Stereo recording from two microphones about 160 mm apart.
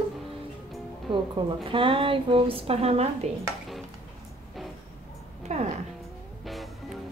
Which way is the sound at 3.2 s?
45° right (ahead or behind).